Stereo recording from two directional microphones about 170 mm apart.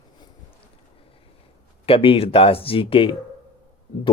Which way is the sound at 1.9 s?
35° left (ahead or behind).